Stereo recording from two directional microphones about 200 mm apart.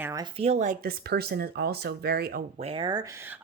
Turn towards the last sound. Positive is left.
turn(degrees=-20)  # may be behind; listen again after turning